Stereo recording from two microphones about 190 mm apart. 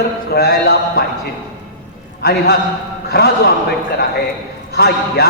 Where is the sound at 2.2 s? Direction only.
55° left (ahead or behind).